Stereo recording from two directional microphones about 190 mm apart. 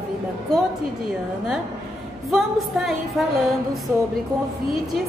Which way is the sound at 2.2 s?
Centre (ahead or behind).